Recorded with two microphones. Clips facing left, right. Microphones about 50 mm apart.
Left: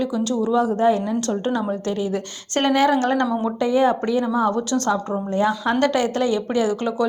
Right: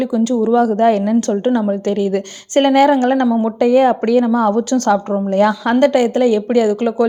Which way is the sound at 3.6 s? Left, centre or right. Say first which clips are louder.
Right 6 dB; right.